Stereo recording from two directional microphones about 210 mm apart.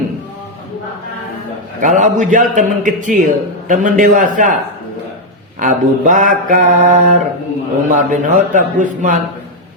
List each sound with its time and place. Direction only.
1.8 s a man's voice: 35° right (ahead or behind)
5.5 s a man's voice: 40° right (ahead or behind)